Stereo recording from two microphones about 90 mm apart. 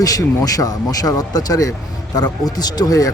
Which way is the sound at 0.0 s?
40° left (ahead or behind).